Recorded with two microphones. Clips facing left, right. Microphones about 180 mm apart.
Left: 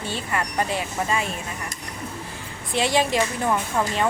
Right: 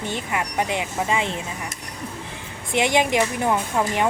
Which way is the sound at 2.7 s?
20° right (ahead or behind).